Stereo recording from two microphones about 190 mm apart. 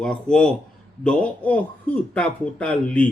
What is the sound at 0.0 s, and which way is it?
A man's voice, 5° left (ahead or behind).